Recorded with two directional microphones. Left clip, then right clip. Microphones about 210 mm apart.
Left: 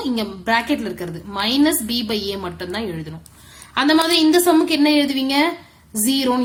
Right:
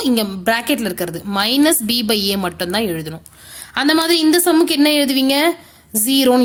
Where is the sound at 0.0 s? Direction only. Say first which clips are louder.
Right 6 dB; 45° right (ahead or behind).